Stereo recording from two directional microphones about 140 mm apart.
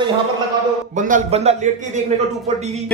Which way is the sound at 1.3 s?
50° right (ahead or behind).